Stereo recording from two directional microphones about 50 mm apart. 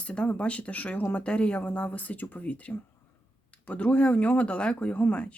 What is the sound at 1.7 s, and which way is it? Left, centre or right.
Speech, left.